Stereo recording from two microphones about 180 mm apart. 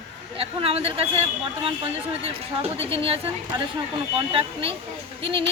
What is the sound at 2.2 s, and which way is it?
Speech, 30° right (ahead or behind).